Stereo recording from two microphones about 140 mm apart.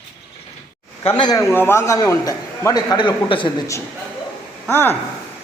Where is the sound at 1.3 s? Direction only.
20° left (ahead or behind); by 3.5 s 35° left (ahead or behind).